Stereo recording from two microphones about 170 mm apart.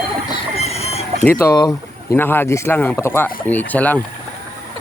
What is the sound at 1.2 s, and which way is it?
Speech, 15° left (ahead or behind).